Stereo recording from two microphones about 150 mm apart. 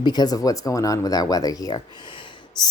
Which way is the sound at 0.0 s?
30° left (ahead or behind).